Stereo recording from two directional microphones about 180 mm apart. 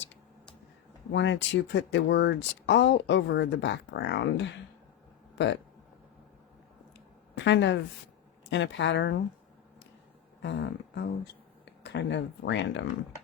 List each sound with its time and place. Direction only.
1.1 s speech: 85° left
7.3 s a woman's voice: 85° left
10.4 s speech: 70° left (ahead or behind)